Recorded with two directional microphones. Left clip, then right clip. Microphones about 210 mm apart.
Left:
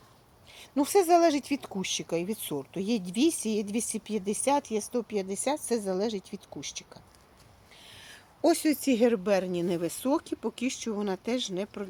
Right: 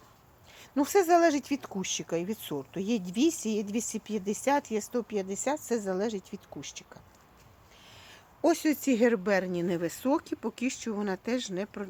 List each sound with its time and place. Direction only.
0.5 s speech: centre (ahead or behind)